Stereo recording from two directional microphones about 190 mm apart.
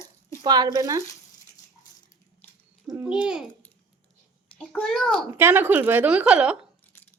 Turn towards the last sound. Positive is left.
turn(degrees=-5)  # may be behind; listen again after turning